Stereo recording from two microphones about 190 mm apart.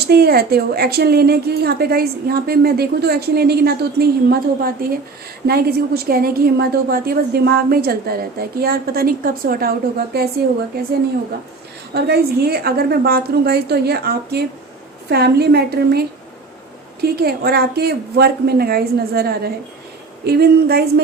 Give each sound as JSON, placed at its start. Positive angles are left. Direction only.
{"t": 0.1, "sound": "a woman's voice", "side_deg": -55}
{"t": 11.9, "sound": "a woman's voice", "side_deg": -55}